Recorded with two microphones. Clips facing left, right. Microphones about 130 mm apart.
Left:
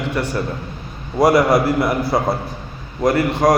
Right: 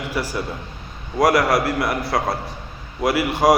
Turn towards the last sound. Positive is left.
turn(degrees=0)  # may be behind; listen again after turning